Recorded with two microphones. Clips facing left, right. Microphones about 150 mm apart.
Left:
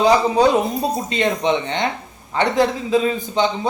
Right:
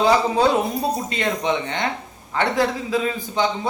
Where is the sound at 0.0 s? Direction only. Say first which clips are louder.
Left 3 dB; 15° left (ahead or behind).